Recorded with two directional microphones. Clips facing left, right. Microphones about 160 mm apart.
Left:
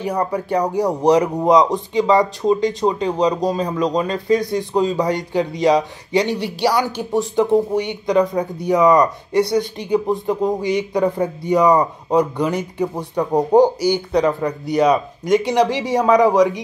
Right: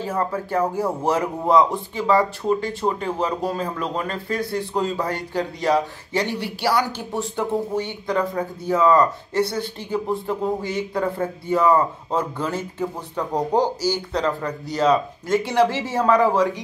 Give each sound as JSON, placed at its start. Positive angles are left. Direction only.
{"t": 0.0, "sound": "speech", "side_deg": 15}
{"t": 13.7, "sound": "speech", "side_deg": 60}
{"t": 14.1, "sound": "speech", "side_deg": 15}